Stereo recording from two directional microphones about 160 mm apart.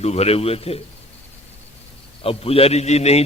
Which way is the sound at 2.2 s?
35° left (ahead or behind).